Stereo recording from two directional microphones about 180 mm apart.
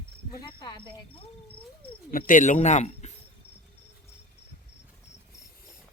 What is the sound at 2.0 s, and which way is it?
Speech, 50° left (ahead or behind).